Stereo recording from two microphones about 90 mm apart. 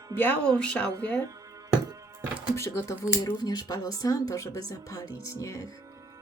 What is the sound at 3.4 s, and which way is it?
Speech, 45° left (ahead or behind).